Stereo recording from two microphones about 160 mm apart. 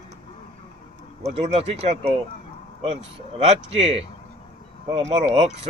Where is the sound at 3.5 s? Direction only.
40° right (ahead or behind).